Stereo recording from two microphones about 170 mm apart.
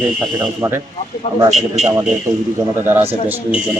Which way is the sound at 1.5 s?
Centre (ahead or behind).